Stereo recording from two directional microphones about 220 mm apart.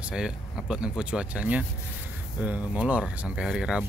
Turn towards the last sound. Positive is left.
turn(degrees=-5)  # may be behind; listen again after turning